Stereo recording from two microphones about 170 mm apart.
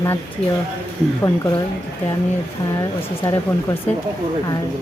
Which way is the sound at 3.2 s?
20° left (ahead or behind).